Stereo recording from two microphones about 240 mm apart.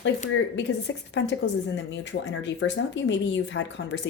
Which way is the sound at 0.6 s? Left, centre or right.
Left.